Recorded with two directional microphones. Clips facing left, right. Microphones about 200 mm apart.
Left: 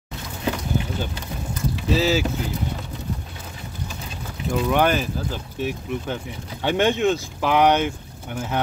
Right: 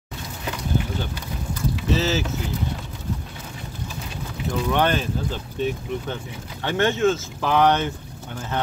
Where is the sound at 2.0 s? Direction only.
10° left (ahead or behind).